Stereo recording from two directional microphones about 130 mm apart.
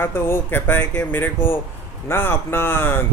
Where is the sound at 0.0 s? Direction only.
15° left (ahead or behind).